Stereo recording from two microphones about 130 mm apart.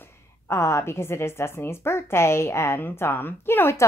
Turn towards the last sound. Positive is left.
turn(degrees=20)  # may be behind; listen again after turning